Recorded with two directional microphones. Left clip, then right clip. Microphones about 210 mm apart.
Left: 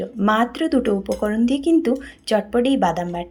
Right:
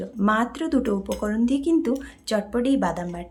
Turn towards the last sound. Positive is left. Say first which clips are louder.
# left 6 dB
turn(degrees=10)  # may be behind; listen again after turning